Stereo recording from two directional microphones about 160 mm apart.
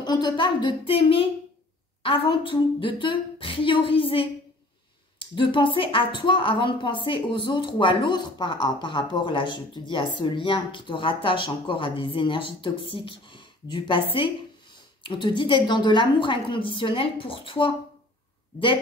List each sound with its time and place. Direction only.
0.0 s a woman's voice: 25° left (ahead or behind)
15.0 s a woman's voice: 30° left (ahead or behind)